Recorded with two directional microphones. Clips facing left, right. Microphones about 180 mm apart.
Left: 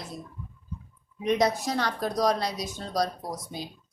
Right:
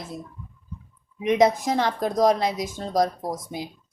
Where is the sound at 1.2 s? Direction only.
20° right (ahead or behind).